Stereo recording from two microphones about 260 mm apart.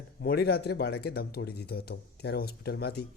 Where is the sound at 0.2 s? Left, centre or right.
Left.